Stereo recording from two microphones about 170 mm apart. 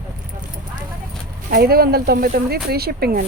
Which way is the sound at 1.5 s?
65° right (ahead or behind).